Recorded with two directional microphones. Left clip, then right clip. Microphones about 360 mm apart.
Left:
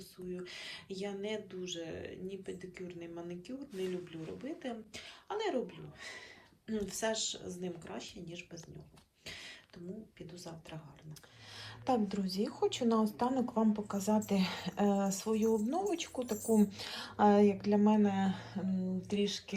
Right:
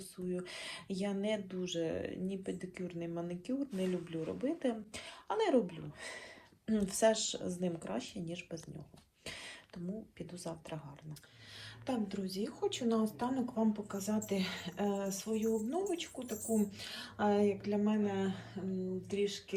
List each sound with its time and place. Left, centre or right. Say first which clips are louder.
0.3 s speech: right 2 dB; centre
11.9 s speech: left 5 dB; centre